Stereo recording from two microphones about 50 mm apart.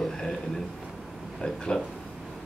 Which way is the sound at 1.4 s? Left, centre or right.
Centre.